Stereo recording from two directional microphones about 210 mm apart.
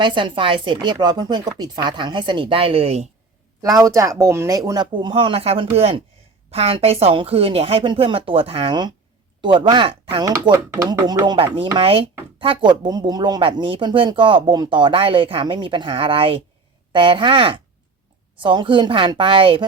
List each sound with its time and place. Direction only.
0.0 s speech: 20° right (ahead or behind)
3.6 s speech: 15° right (ahead or behind)